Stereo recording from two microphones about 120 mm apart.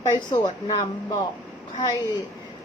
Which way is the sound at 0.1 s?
35° left (ahead or behind).